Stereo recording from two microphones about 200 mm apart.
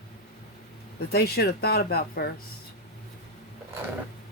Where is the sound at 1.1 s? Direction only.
50° left (ahead or behind).